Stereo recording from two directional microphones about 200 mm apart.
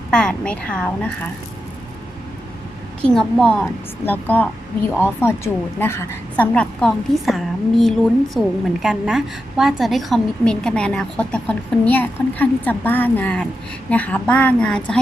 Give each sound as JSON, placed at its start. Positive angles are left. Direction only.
{"t": 0.1, "sound": "a woman's voice", "side_deg": 5}
{"t": 3.0, "sound": "a woman's voice", "side_deg": 5}